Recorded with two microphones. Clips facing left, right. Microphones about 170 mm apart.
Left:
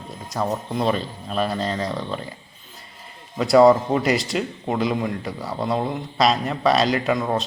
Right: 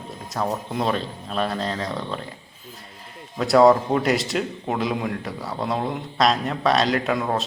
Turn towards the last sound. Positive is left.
turn(degrees=0)  # may be behind; listen again after turning